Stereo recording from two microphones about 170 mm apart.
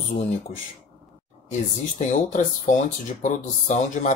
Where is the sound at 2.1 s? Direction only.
45° left (ahead or behind).